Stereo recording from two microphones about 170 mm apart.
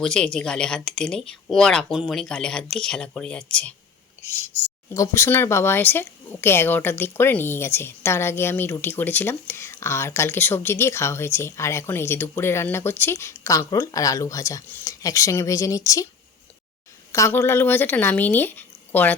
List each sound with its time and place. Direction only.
0.0 s speech: 5° left (ahead or behind)
4.5 s a sound: 40° left (ahead or behind)
4.9 s speech: 15° left (ahead or behind)
17.1 s speech: 15° left (ahead or behind)